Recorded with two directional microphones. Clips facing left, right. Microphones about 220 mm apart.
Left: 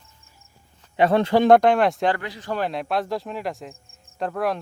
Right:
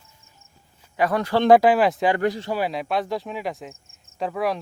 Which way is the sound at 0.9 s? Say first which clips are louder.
Left 4 dB; 25° left (ahead or behind).